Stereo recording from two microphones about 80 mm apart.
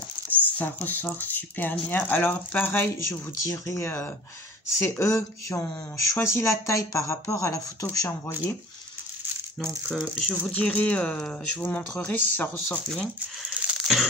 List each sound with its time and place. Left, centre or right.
0.3 s patter: left
0.8 s speech: left
3.4 s speech: left
9.6 s speech: centre
10.5 s speech: centre
12.8 s speech: centre
13.6 s a sound: centre